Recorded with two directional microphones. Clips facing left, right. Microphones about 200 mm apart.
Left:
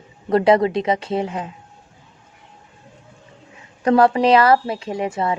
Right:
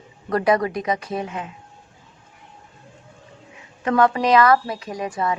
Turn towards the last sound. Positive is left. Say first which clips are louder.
# left 3 dB
turn(degrees=25)  # may be behind; listen again after turning